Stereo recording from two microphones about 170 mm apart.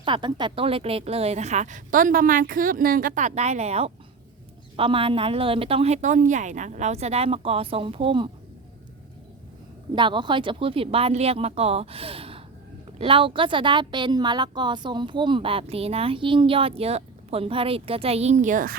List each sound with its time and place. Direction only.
0.0 s a woman's voice: 30° right (ahead or behind)
9.9 s a woman's voice: 30° right (ahead or behind); by 18.8 s 55° right (ahead or behind)